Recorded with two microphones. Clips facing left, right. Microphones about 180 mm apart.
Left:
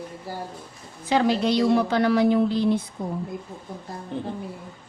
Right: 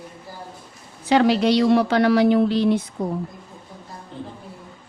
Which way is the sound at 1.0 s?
75° right (ahead or behind).